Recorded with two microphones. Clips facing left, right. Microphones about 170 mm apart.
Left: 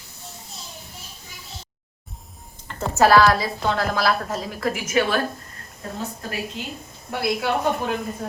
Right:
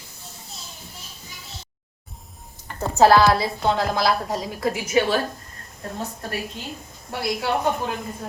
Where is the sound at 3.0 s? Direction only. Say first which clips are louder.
Right 1 dB; 20° right (ahead or behind).